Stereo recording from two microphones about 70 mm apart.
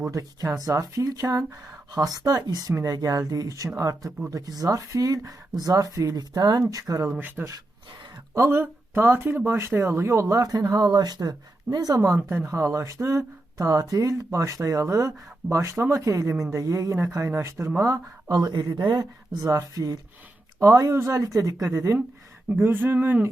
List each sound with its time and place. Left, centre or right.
0.0 s speech: right
1.9 s speech: right
6.7 s speech: right
7.2 s speech: right
8.4 s speech: right
12.5 s speech: right
18.3 s speech: right
22.6 s speech: right